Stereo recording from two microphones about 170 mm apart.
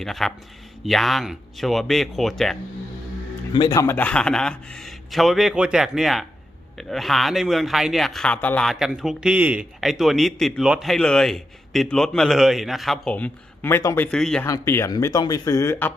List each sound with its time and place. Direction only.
0.0 s speech: centre (ahead or behind)
3.5 s speech: 25° left (ahead or behind); by 14.4 s 5° left (ahead or behind)
14.4 s speech: 15° left (ahead or behind)